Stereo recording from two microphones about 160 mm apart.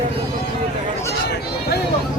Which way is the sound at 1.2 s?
85° left.